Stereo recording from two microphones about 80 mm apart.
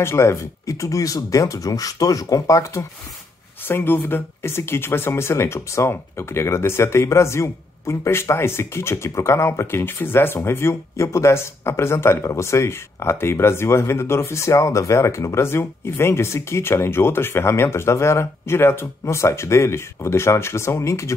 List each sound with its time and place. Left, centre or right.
0.0 s speech: left
3.6 s speech: left